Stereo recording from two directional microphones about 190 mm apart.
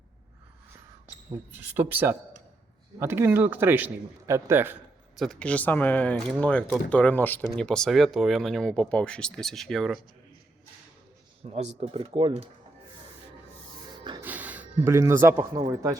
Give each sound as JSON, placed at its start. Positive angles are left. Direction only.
{"t": 1.5, "sound": "speech", "side_deg": -10}
{"t": 5.1, "sound": "speech", "side_deg": 0}
{"t": 11.4, "sound": "speech", "side_deg": -35}
{"t": 14.2, "sound": "music", "side_deg": -10}
{"t": 15.7, "sound": "speech", "side_deg": -20}